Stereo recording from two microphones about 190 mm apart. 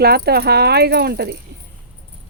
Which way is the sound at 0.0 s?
55° right (ahead or behind).